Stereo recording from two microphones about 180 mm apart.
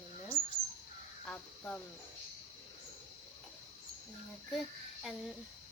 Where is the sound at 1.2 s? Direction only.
5° left (ahead or behind).